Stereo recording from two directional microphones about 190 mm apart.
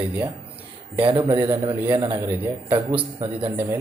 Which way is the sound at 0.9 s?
25° right (ahead or behind).